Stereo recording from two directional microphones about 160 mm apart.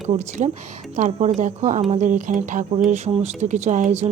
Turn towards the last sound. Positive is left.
turn(degrees=-50)  # may be behind; listen again after turning